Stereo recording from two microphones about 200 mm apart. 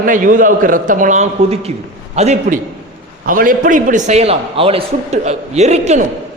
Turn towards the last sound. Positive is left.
turn(degrees=-35)  # may be behind; listen again after turning